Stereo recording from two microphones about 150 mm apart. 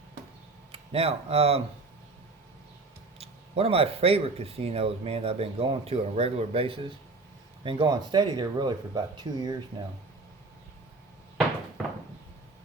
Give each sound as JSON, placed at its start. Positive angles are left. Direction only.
{"t": 0.7, "sound": "speech", "side_deg": -40}
{"t": 3.2, "sound": "speech", "side_deg": -40}